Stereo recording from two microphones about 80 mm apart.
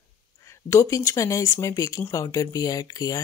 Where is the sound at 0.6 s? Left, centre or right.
Left.